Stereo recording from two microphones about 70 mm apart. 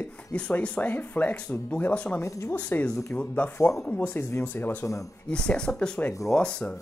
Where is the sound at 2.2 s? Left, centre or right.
Left.